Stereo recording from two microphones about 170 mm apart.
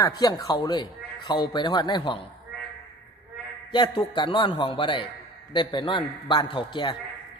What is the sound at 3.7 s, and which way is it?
A man's voice, 25° left (ahead or behind).